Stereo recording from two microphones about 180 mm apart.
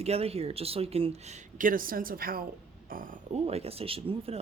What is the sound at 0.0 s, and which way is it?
Speech, 35° right (ahead or behind).